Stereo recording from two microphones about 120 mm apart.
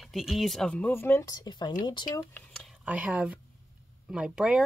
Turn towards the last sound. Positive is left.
turn(degrees=-5)  # may be behind; listen again after turning